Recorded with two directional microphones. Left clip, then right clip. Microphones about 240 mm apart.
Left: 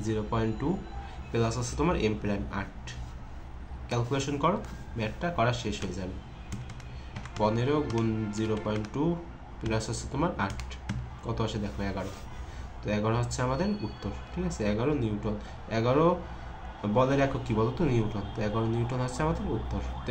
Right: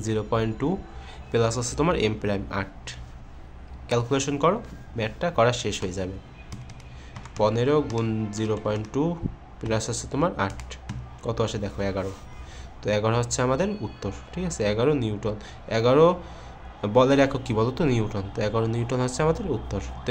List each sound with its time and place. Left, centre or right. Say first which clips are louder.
0.0 s speech: right 5 dB; right
7.3 s speech: right 6 dB; right